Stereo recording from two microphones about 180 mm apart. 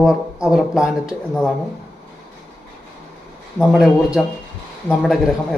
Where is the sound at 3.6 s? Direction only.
Centre (ahead or behind).